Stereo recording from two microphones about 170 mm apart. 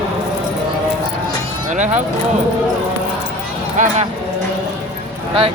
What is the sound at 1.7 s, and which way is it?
Speech, 45° right (ahead or behind).